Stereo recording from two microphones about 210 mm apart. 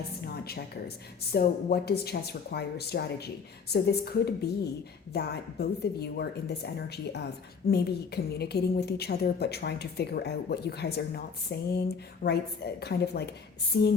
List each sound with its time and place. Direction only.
1.3 s a woman's voice: 50° left (ahead or behind)